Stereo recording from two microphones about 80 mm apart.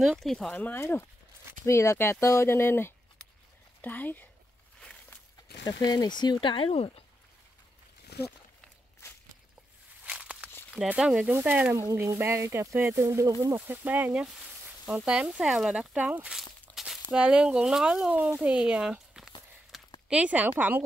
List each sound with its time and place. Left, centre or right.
0.0 s speech: centre
0.5 s speech: centre
0.7 s speech: left
5.7 s speech: left
10.0 s walk: centre
11.0 s speech: centre
11.2 s speech: right
11.7 s speech: right
13.6 s speech: right
16.7 s a sound: centre
17.2 s speech: centre
19.7 s a sound: centre
20.1 s speech: centre